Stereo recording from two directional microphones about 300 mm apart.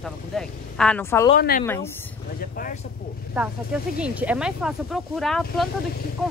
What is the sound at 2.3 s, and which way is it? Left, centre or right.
Speech, left.